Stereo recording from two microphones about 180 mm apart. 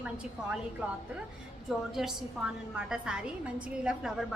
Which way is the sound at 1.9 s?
Centre (ahead or behind).